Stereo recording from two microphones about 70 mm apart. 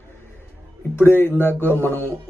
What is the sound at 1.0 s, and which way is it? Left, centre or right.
Speech, left.